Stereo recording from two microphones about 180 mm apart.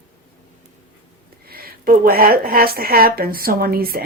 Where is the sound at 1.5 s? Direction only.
55° right (ahead or behind).